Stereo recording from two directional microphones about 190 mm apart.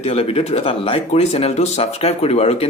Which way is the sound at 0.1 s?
30° left (ahead or behind).